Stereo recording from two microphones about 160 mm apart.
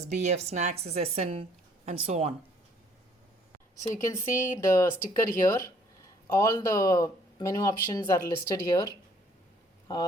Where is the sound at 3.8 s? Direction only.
20° left (ahead or behind).